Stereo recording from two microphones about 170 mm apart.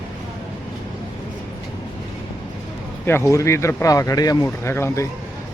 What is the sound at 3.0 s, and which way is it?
Speech, 15° left (ahead or behind).